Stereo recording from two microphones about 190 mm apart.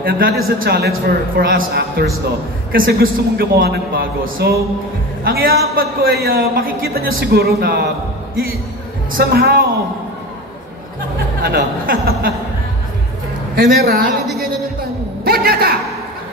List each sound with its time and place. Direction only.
0.0 s a man's voice: 50° right (ahead or behind)
9.1 s a man's voice: 55° right (ahead or behind)
11.4 s a man's voice: 50° right (ahead or behind)
13.6 s a man's voice: 55° right (ahead or behind)
15.2 s a man's voice: 50° right (ahead or behind)